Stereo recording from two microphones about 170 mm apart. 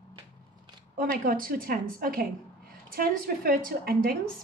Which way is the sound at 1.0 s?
60° right (ahead or behind).